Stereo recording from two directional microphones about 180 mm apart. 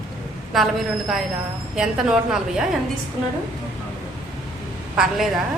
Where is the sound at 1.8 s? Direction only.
5° right (ahead or behind).